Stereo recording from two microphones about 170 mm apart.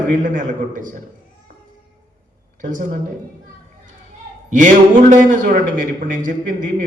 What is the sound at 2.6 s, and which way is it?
Speech, 50° right (ahead or behind).